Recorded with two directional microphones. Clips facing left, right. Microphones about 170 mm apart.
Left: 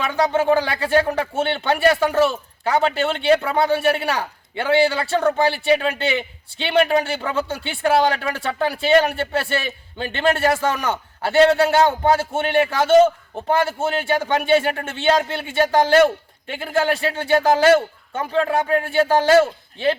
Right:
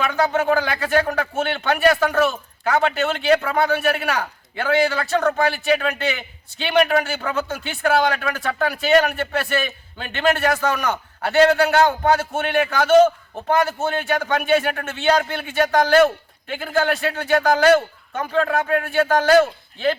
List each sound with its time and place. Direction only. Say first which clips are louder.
0.0 s a man's voice: left 1 dB; 25° left (ahead or behind)